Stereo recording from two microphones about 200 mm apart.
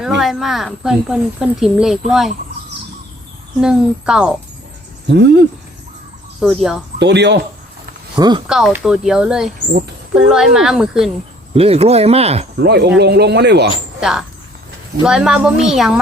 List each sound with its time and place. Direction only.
0.0 s speech: centre (ahead or behind)
3.6 s speech: 5° right (ahead or behind)
5.0 s speech: 60° right (ahead or behind)
6.4 s speech: centre (ahead or behind)
7.0 s speech: 60° right (ahead or behind)
8.1 s speech: 20° right (ahead or behind)
8.4 s speech: centre (ahead or behind)
11.5 s speech: 30° right (ahead or behind)
12.5 s speech: 55° right (ahead or behind)
14.0 s speech: centre (ahead or behind)